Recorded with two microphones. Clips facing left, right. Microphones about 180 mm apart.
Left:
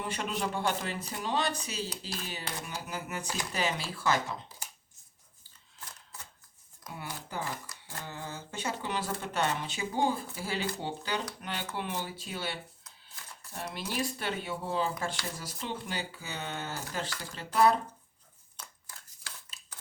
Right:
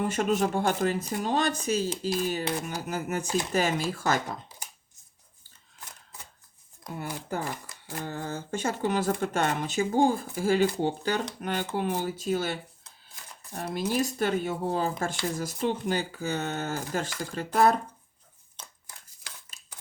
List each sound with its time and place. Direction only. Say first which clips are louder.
0.0 s speech: right 8 dB; 45° right (ahead or behind)
3.2 s speech: right 8 dB; 25° right (ahead or behind)
3.5 s speech: right 5 dB; 45° right (ahead or behind)
7.0 s speech: right 5 dB; 45° right (ahead or behind)
13.7 s speech: right 8 dB; 45° right (ahead or behind)